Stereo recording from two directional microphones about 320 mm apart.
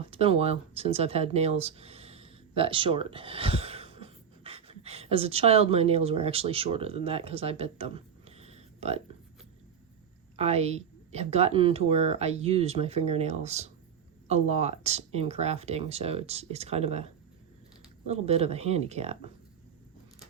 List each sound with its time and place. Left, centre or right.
0.1 s speech: centre
10.3 s a woman's voice: centre